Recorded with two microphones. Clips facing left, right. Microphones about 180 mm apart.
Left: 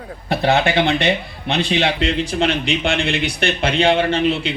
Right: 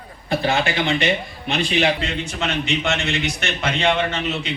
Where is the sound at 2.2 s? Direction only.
30° left (ahead or behind).